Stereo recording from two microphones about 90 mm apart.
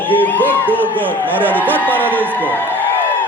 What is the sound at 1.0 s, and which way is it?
Speech, 20° right (ahead or behind).